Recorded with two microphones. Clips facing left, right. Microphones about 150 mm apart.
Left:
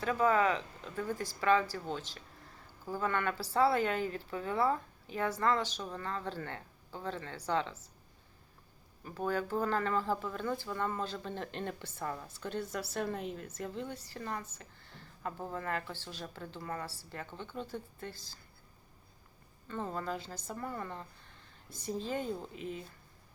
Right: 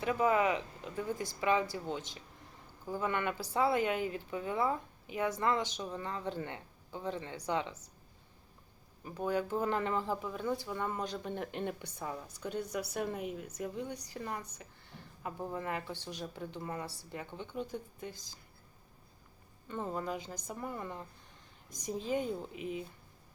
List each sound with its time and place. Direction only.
0.0 s speech: 15° right (ahead or behind)
9.0 s speech: 15° right (ahead or behind)
19.6 s speech: 15° right (ahead or behind)